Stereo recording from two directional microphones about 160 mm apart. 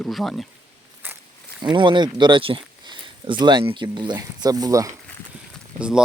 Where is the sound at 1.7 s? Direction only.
30° right (ahead or behind).